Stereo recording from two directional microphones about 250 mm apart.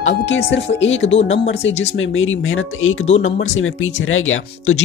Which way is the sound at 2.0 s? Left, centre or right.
Left.